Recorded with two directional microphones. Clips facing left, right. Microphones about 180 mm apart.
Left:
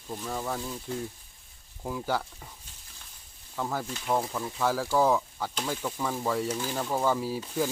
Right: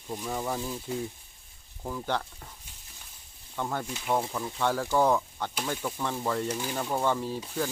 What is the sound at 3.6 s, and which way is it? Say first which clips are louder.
Speech: even; centre (ahead or behind).